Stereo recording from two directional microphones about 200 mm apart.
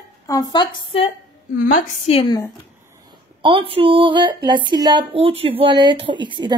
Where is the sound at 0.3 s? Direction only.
20° left (ahead or behind).